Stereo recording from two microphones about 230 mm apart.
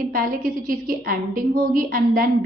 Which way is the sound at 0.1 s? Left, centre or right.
Right.